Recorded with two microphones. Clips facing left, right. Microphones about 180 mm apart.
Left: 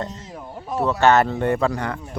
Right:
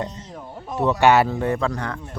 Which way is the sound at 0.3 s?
5° left (ahead or behind).